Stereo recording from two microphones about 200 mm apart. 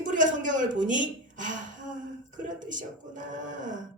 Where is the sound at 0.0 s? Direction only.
40° right (ahead or behind).